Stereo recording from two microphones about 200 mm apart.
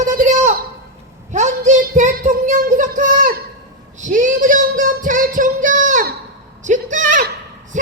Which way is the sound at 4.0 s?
40° right (ahead or behind).